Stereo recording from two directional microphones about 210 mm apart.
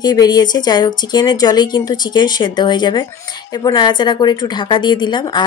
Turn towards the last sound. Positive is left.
turn(degrees=20)  # may be behind; listen again after turning